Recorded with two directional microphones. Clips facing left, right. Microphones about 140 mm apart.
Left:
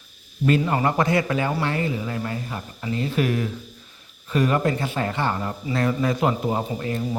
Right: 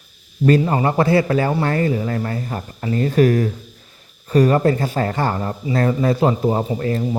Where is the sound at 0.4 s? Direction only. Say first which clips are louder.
Right 5 dB; 35° right (ahead or behind).